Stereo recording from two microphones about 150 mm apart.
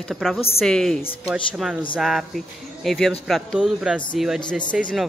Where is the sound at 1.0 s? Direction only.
40° left (ahead or behind).